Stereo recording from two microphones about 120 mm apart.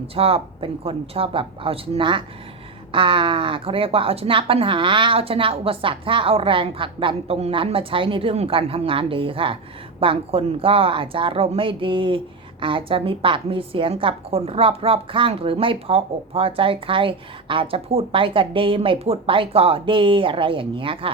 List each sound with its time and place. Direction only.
0.1 s speech: 55° right (ahead or behind)